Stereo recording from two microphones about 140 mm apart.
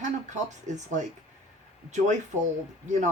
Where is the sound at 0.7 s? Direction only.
60° right (ahead or behind).